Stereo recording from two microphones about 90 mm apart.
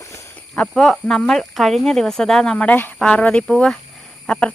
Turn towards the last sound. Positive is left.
turn(degrees=15)  # may be behind; listen again after turning